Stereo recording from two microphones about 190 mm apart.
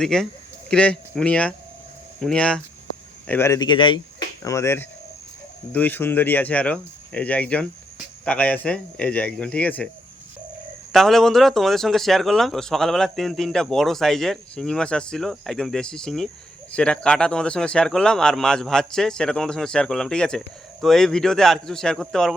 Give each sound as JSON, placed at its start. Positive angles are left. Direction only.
{"t": 0.0, "sound": "speech", "side_deg": 0}
{"t": 4.4, "sound": "speech", "side_deg": 15}
{"t": 10.9, "sound": "speech", "side_deg": 0}